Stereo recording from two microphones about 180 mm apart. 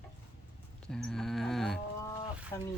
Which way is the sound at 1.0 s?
Centre (ahead or behind).